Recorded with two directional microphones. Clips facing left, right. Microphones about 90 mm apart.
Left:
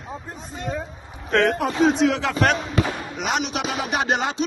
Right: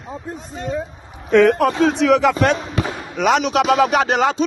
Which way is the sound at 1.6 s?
90° right.